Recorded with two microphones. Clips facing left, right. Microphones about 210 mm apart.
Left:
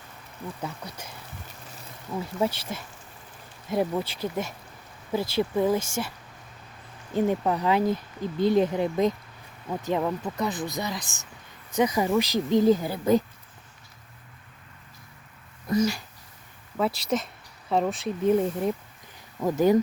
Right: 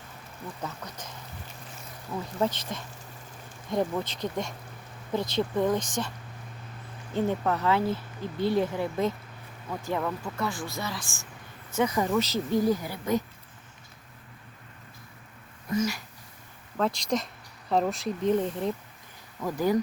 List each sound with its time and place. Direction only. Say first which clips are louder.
0.6 s speech: left 2 dB; 10° left (ahead or behind)
2.4 s speech: left 1 dB; 10° left (ahead or behind)
7.1 s speech: left 3 dB; 15° left (ahead or behind); by 13.2 s 30° left (ahead or behind)
15.7 s speech: left 4 dB; 35° left (ahead or behind)
16.7 s speech: left 1 dB; 5° left (ahead or behind)
19.4 s speech: left 5 dB; 20° left (ahead or behind)